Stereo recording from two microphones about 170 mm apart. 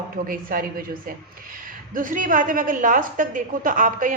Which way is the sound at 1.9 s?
55° right (ahead or behind).